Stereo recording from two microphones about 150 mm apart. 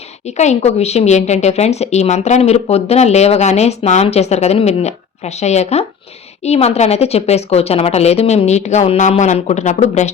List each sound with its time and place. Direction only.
0.3 s a woman's voice: 50° left (ahead or behind)